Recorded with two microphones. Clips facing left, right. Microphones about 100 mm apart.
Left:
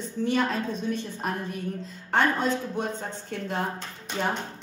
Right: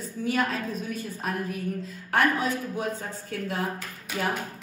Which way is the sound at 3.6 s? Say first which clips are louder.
Even; 30° left (ahead or behind).